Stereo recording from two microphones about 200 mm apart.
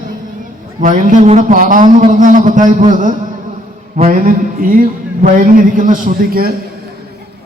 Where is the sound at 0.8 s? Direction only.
40° right (ahead or behind).